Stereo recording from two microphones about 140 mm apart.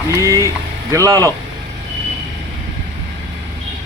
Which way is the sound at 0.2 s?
25° right (ahead or behind).